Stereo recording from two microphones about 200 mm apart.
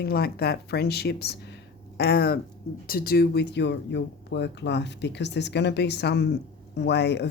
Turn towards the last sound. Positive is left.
turn(degrees=60)  # may be behind; listen again after turning